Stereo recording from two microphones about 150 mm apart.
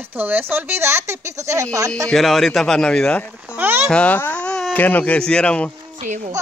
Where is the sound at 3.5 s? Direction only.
15° right (ahead or behind).